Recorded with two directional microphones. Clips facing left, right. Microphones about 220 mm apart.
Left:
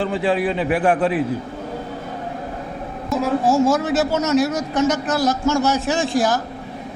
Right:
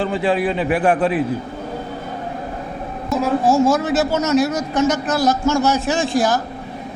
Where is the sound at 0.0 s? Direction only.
25° right (ahead or behind).